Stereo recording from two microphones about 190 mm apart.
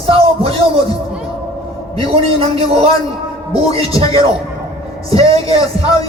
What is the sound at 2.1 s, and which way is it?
Speech, 30° right (ahead or behind).